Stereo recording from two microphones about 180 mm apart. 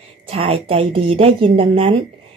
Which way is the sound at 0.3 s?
30° right (ahead or behind).